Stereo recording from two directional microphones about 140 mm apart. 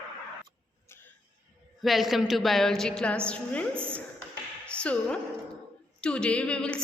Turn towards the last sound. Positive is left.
turn(degrees=5)  # may be behind; listen again after turning